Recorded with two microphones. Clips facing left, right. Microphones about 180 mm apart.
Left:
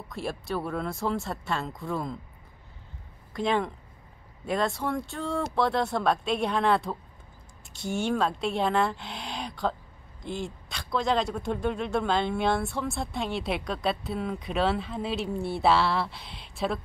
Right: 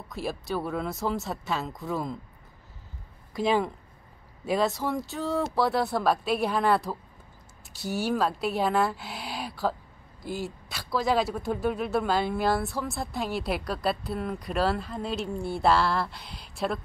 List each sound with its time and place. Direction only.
0.1 s a man's voice: centre (ahead or behind)
3.3 s a man's voice: 5° right (ahead or behind)